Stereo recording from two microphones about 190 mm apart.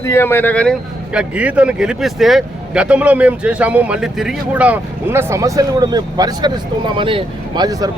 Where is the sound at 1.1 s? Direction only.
5° right (ahead or behind).